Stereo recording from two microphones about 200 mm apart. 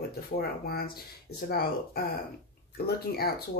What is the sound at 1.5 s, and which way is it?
Speech, 50° left (ahead or behind).